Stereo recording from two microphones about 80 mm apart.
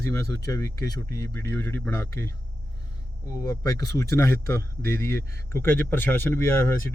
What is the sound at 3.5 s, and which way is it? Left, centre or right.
Speech, left.